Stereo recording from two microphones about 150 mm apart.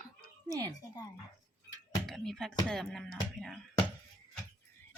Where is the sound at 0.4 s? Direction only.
25° right (ahead or behind).